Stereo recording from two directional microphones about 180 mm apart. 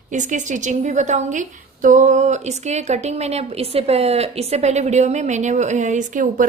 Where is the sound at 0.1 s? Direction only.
45° right (ahead or behind).